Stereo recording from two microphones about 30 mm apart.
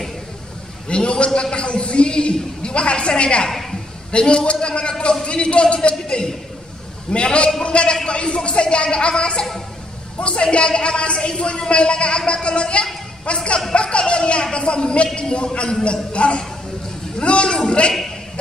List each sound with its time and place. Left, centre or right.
0.8 s a man's voice: left